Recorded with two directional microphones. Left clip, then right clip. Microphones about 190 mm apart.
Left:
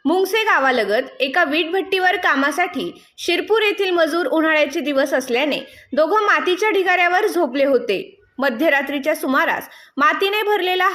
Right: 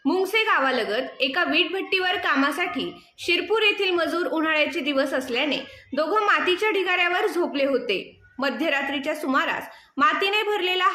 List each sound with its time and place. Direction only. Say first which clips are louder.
0.0 s a woman's voice: left 5 dB; 35° left (ahead or behind)